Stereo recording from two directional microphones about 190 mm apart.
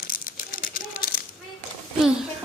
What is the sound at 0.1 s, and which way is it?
Crumpling, 45° left (ahead or behind).